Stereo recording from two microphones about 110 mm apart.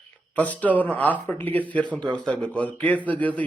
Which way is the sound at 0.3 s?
15° left (ahead or behind).